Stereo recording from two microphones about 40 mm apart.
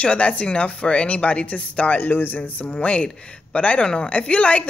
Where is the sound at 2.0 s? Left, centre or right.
Left.